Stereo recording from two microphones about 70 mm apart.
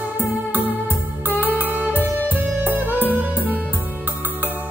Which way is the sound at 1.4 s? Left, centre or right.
Right.